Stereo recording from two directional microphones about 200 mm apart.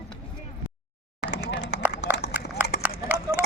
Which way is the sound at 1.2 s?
60° left (ahead or behind).